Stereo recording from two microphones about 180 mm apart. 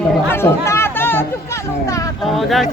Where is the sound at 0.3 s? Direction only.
15° left (ahead or behind).